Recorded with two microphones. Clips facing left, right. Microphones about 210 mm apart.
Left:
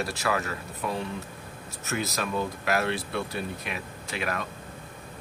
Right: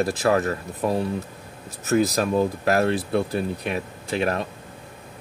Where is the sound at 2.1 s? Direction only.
35° right (ahead or behind).